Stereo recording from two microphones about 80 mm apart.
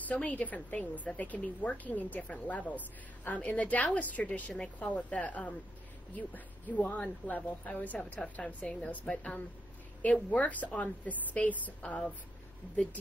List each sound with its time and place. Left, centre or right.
0.1 s a woman's voice: centre
12.6 s speech: centre